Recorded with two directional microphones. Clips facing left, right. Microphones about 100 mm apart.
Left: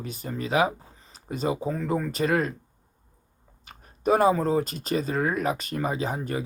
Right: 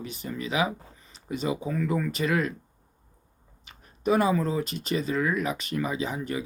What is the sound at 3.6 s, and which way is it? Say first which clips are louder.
Speech: left 2 dB; 45° left (ahead or behind).